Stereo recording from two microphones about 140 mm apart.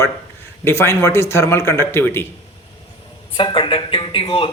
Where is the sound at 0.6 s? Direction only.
20° left (ahead or behind).